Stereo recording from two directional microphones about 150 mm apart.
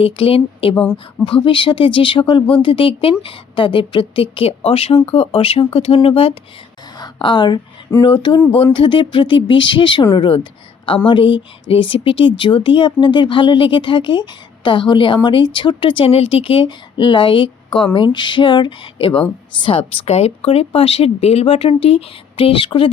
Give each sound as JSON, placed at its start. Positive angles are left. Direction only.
{"t": 0.0, "sound": "speech", "side_deg": 40}